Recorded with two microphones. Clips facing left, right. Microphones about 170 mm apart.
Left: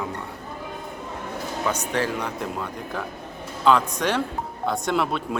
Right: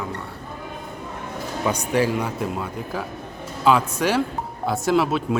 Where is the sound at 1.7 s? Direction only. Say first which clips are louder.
Right 5 dB; 10° right (ahead or behind).